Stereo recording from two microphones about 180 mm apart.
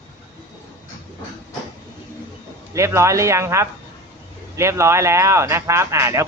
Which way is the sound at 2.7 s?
15° right (ahead or behind).